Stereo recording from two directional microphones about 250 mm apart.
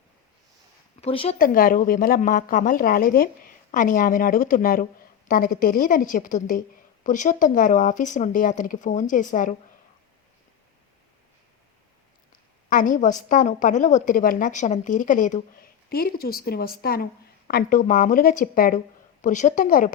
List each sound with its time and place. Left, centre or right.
1.0 s speech: left
1.4 s a woman's voice: left
12.7 s a woman's voice: left